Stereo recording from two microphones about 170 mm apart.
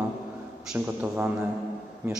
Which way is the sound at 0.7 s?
5° right (ahead or behind).